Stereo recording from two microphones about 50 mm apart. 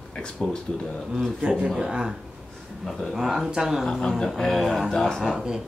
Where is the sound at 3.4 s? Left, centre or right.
Centre.